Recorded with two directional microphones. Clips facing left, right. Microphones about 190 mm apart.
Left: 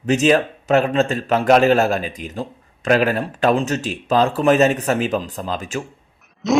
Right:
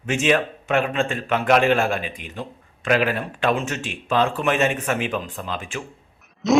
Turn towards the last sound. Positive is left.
turn(degrees=0)  # may be behind; listen again after turning